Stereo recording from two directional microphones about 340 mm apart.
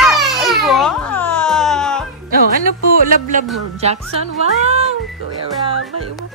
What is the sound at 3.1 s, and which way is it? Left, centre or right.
A child's voice, right.